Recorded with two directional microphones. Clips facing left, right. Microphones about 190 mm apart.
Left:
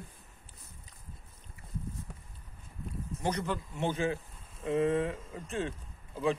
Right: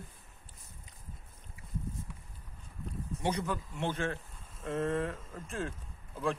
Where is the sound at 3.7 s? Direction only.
5° left (ahead or behind).